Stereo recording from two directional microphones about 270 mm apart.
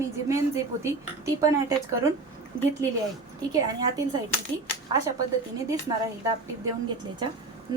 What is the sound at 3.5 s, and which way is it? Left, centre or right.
Speech, centre.